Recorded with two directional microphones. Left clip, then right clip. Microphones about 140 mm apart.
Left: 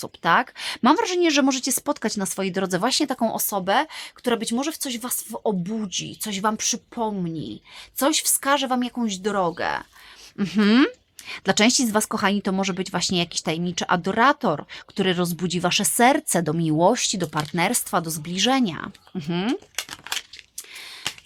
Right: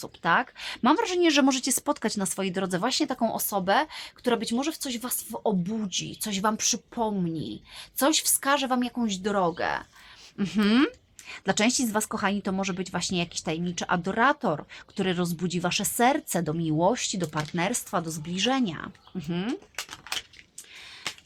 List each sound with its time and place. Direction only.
0.0 s a woman's voice: 35° left (ahead or behind); by 19.5 s 55° left (ahead or behind)